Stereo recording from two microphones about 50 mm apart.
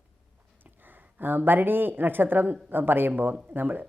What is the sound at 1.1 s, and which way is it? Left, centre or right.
Speech, right.